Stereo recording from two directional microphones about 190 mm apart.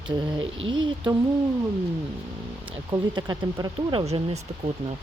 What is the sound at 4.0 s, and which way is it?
Speech, 35° right (ahead or behind).